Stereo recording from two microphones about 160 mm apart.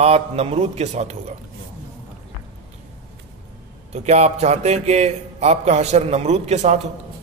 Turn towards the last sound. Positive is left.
turn(degrees=-45)  # may be behind; listen again after turning